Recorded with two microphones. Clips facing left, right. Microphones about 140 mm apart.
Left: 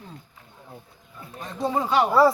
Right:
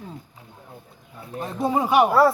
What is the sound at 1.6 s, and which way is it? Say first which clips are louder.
Speech: right 3 dB; 15° right (ahead or behind).